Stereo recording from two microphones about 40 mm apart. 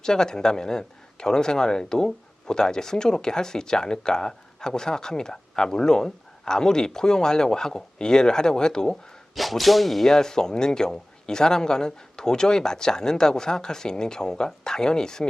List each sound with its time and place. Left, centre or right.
0.0 s speech: centre
9.3 s speech: centre
10.2 s speech: centre